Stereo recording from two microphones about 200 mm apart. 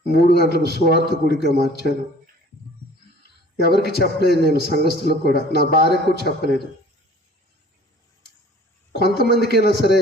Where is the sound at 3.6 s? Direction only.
55° left (ahead or behind).